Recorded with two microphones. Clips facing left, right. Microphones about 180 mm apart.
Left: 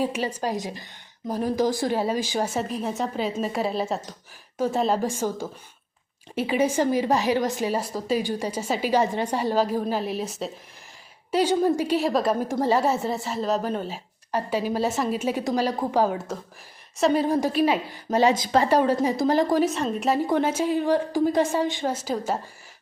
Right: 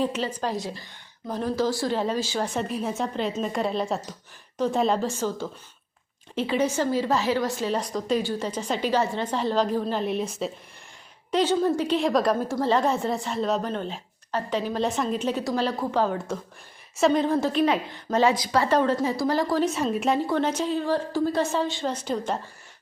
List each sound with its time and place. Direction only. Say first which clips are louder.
0.0 s a woman's voice: left 1 dB; 10° left (ahead or behind)
12.4 s a woman's voice: left 1 dB; 15° left (ahead or behind)
19.6 s a woman's voice: even; 5° right (ahead or behind)
20.2 s a woman's voice: left 2 dB; 10° left (ahead or behind)
21.9 s a woman's voice: left 1 dB; 5° left (ahead or behind)